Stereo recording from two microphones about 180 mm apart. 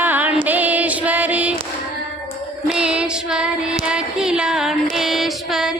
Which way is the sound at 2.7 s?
5° right (ahead or behind).